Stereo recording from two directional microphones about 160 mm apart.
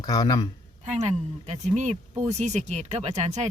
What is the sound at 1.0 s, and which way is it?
Speech, 45° right (ahead or behind).